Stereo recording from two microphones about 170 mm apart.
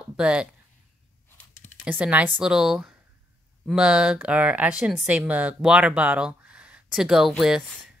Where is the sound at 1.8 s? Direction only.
10° right (ahead or behind).